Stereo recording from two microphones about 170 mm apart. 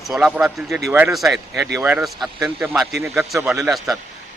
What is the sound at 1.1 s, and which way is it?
A man's voice, centre (ahead or behind).